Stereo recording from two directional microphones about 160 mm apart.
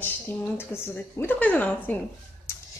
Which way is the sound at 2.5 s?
15° left (ahead or behind).